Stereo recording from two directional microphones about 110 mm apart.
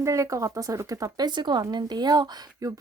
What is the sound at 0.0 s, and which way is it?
Speech, 30° right (ahead or behind).